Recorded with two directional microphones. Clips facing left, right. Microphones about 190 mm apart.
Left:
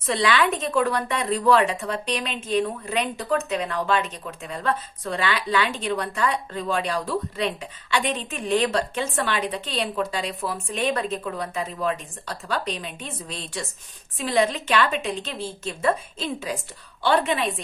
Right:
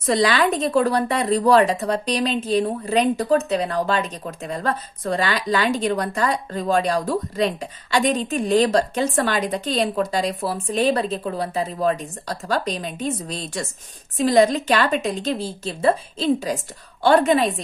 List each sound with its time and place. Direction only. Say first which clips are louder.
0.0 s a woman's voice: right 3 dB; 40° right (ahead or behind)